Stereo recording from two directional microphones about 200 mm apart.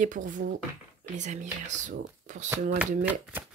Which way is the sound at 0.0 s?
40° right (ahead or behind).